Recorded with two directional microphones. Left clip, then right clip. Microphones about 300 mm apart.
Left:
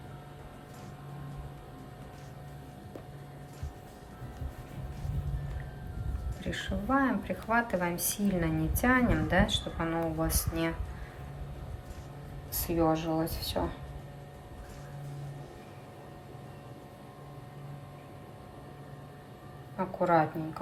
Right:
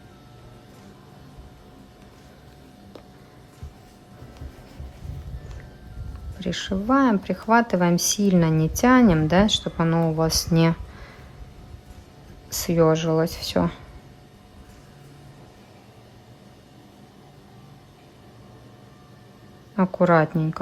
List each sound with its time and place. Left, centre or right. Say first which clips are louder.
6.4 s a woman's voice: right 8 dB; centre
12.5 s speech: right 9 dB; right
20.0 s speech: right 7 dB; centre